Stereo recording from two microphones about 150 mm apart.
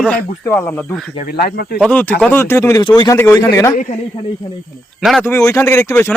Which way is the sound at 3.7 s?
55° left (ahead or behind).